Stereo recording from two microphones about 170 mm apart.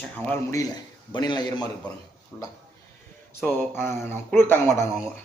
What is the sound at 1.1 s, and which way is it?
Speech, 25° left (ahead or behind).